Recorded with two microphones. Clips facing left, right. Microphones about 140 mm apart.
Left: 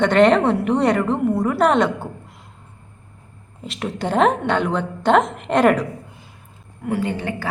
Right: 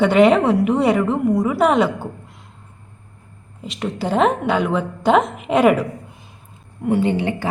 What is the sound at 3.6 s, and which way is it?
A woman's voice, centre (ahead or behind).